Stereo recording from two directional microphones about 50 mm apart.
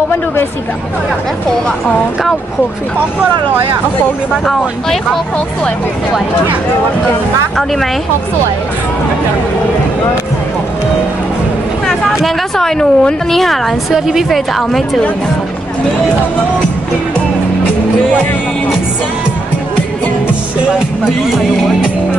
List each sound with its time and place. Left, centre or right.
12.5 s speech: centre
13.9 s a woman's voice: centre